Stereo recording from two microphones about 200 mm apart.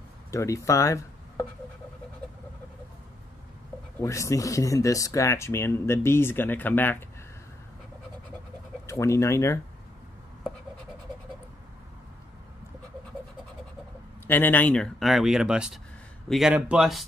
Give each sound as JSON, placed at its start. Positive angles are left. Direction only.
{"t": 0.3, "sound": "speech", "side_deg": 15}
{"t": 4.0, "sound": "speech", "side_deg": 15}
{"t": 8.8, "sound": "speech", "side_deg": 15}
{"t": 14.2, "sound": "speech", "side_deg": 10}